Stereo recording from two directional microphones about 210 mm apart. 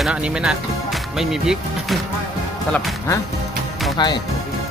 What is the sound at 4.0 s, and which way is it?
Speech, 20° left (ahead or behind).